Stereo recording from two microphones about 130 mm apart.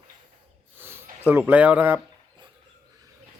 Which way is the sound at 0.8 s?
15° right (ahead or behind).